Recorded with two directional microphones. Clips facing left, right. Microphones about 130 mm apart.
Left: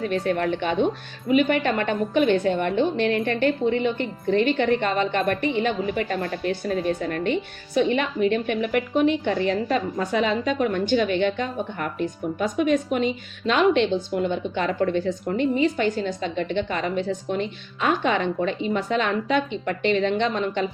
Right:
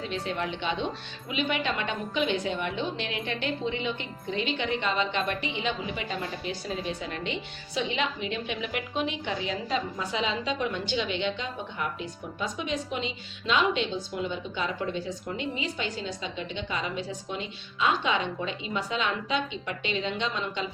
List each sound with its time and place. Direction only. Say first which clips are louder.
0.0 s a woman's voice: left 8 dB; 55° left (ahead or behind)